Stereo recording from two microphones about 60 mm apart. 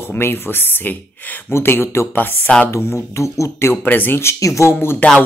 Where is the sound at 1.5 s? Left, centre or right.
Left.